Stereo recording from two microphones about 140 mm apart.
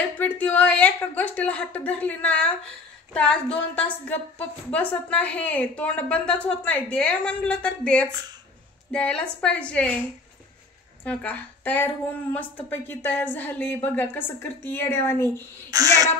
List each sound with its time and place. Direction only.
0.2 s a woman's voice: 10° left (ahead or behind)
11.1 s a woman's voice: 10° left (ahead or behind)
15.7 s speech: 25° right (ahead or behind)